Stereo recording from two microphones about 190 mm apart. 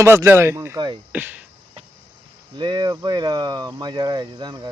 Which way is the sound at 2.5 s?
25° right (ahead or behind).